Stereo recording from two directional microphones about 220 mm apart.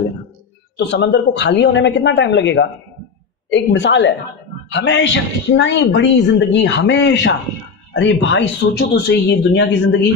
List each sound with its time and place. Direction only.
0.7 s speech: 55° left (ahead or behind)